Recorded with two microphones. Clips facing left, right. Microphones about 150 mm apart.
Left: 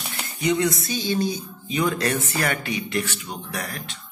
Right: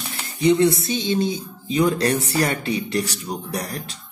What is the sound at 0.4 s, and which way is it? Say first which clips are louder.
Speech: right 6 dB; 30° right (ahead or behind).